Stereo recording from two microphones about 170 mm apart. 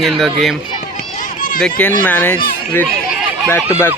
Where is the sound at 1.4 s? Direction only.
50° left (ahead or behind).